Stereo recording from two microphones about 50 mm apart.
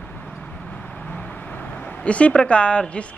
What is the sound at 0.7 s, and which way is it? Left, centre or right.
Vehicle, left.